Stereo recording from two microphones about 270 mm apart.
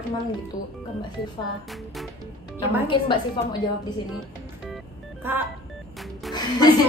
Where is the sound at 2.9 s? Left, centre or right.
Centre.